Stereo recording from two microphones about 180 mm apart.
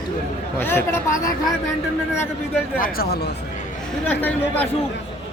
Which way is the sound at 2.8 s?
60° left (ahead or behind).